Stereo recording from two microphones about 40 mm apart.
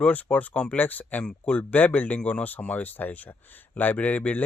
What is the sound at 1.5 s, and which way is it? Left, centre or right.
Speech, left.